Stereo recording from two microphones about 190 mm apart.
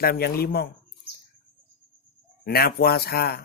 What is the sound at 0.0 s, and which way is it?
Speech, 55° left (ahead or behind).